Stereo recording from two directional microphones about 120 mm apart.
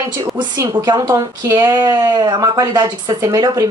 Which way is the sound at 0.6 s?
30° right (ahead or behind).